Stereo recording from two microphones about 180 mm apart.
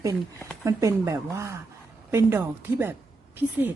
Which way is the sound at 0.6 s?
15° right (ahead or behind).